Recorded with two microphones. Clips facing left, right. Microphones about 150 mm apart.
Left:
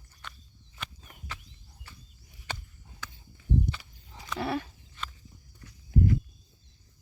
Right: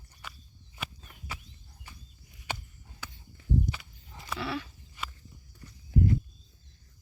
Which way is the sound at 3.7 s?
65° left (ahead or behind).